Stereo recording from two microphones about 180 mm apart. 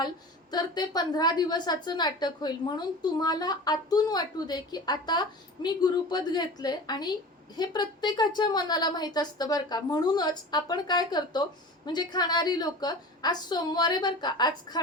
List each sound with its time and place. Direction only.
0.5 s a woman's voice: 25° left (ahead or behind)